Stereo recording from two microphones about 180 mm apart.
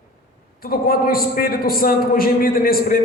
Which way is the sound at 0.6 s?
55° left (ahead or behind).